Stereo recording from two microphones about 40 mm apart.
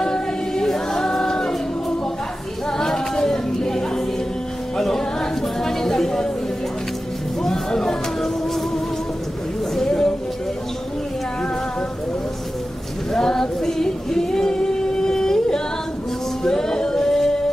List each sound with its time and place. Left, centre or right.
0.0 s choir: centre
2.8 s music: centre
5.6 s chatter: centre
7.4 s a sound: centre
9.8 s a sound: centre
13.1 s singing: centre
16.4 s male singing: centre